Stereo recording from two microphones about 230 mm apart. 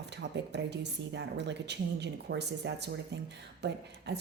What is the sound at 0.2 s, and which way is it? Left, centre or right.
Speech, right.